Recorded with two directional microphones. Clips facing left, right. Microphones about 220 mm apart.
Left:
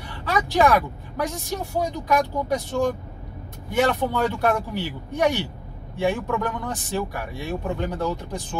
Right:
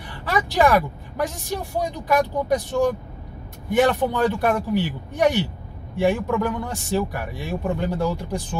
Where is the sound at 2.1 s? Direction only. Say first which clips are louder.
Right 4 dB; 15° right (ahead or behind).